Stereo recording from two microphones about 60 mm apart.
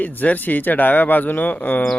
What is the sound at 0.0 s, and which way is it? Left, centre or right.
Speech, left.